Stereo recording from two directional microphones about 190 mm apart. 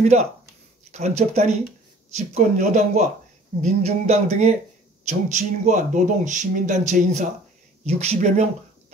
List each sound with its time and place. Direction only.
0.0 s speech: 35° right (ahead or behind)